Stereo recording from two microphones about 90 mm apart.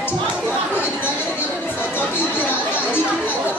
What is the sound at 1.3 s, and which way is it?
Chatter, 20° left (ahead or behind).